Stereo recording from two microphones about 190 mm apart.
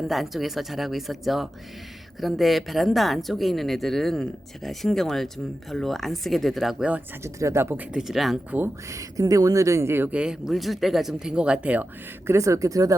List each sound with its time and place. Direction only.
0.1 s speech: centre (ahead or behind); by 12.9 s 15° right (ahead or behind)